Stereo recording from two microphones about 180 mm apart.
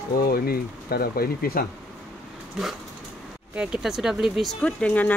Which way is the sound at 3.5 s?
5° right (ahead or behind).